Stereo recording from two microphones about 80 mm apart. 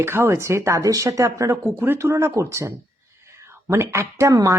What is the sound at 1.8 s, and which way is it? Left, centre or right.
Speech, right.